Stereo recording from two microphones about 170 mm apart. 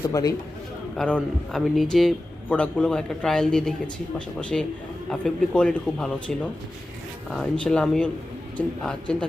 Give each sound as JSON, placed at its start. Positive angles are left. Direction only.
{"t": 0.0, "sound": "a man's voice", "side_deg": 20}
{"t": 0.9, "sound": "a man's voice", "side_deg": 5}